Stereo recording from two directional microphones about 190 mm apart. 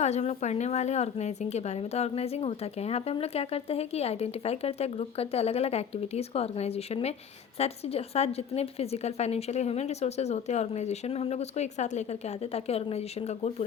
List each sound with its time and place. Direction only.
0.0 s a woman's voice: 35° left (ahead or behind)